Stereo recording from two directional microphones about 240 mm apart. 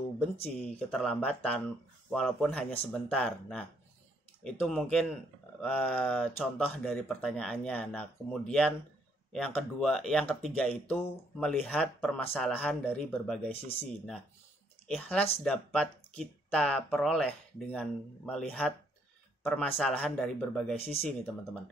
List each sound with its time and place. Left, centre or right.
0.2 s speech: centre
20.7 s speech: left